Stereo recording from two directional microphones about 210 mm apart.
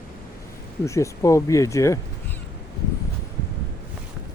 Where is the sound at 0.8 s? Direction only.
15° left (ahead or behind).